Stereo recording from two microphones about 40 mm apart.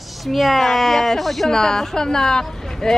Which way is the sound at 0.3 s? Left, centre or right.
Centre.